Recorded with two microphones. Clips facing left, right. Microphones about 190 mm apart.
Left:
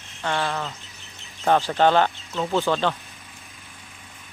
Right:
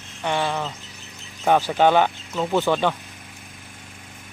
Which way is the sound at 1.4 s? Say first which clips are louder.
Right 1 dB; 10° right (ahead or behind).